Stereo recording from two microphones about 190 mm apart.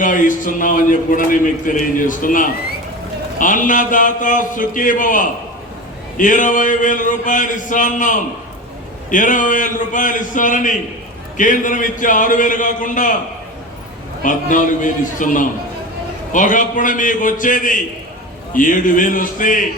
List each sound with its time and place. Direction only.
0.0 s a man's voice: 45° left (ahead or behind)
14.2 s a man's voice: 45° left (ahead or behind)